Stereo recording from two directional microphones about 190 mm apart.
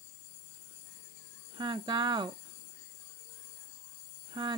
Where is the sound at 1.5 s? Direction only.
25° right (ahead or behind).